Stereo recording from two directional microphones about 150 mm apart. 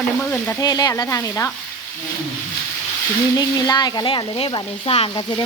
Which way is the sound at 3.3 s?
25° left (ahead or behind).